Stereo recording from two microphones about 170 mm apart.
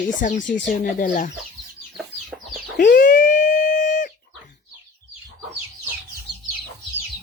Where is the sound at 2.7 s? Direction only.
50° left (ahead or behind).